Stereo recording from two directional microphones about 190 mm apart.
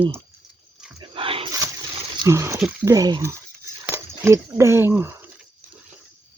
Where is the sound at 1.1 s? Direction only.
30° right (ahead or behind).